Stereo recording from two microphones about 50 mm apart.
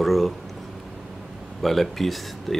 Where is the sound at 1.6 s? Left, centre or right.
Centre.